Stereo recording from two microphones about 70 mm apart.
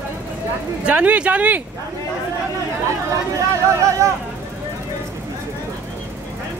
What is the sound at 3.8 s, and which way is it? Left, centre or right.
Speech, right.